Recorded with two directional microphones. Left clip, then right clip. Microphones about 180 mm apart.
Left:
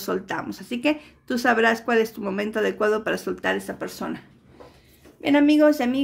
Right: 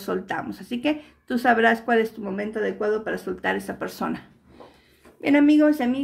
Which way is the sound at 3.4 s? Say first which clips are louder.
Left 1 dB; 15° left (ahead or behind).